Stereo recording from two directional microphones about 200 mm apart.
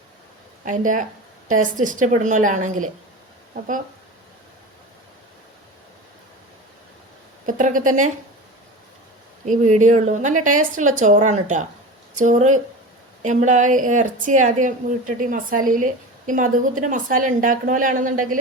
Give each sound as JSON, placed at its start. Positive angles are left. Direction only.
{"t": 0.6, "sound": "a woman's voice", "side_deg": -40}
{"t": 7.4, "sound": "a woman's voice", "side_deg": -40}
{"t": 9.5, "sound": "a woman's voice", "side_deg": -40}